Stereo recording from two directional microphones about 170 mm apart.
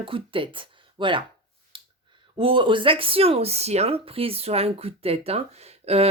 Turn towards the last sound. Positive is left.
turn(degrees=-35)  # may be behind; listen again after turning